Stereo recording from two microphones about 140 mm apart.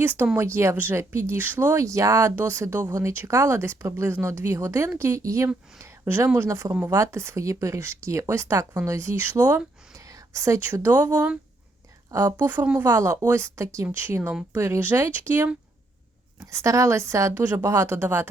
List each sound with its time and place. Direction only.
0.3 s a woman's voice: 20° right (ahead or behind)
11.0 s a woman's voice: 25° right (ahead or behind)
14.2 s speech: 5° right (ahead or behind)
14.5 s a woman's voice: 15° right (ahead or behind)